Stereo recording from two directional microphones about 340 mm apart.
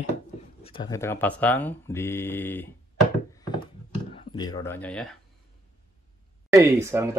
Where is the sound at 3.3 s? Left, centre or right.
Centre.